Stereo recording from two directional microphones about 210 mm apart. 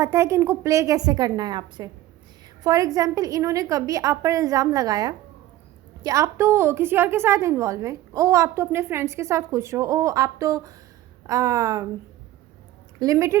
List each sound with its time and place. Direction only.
0.0 s a woman's voice: 15° right (ahead or behind)
13.0 s a woman's voice: 15° right (ahead or behind)